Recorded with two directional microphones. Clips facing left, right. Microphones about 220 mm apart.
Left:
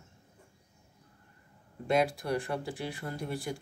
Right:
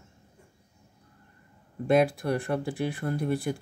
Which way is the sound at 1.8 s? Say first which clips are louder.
Right 5 dB; 55° right (ahead or behind).